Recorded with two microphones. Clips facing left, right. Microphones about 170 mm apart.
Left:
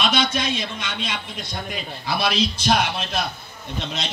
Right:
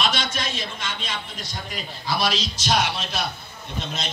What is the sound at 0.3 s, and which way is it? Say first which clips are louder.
Speech: left 5 dB; 55° left (ahead or behind).